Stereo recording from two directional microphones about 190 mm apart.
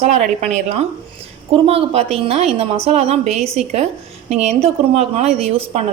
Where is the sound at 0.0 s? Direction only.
35° right (ahead or behind).